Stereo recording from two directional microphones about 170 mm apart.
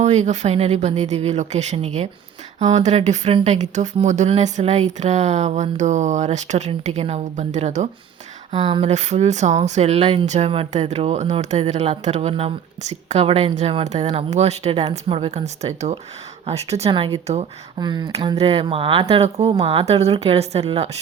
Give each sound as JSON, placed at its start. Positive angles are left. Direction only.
{"t": 0.0, "sound": "speech", "side_deg": -40}
{"t": 8.5, "sound": "speech", "side_deg": -30}
{"t": 8.9, "sound": "speech", "side_deg": -40}
{"t": 17.7, "sound": "speech", "side_deg": -25}